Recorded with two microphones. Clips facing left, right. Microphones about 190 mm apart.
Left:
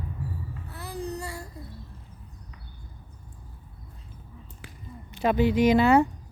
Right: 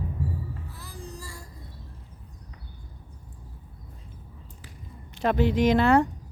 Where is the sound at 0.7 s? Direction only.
65° left (ahead or behind).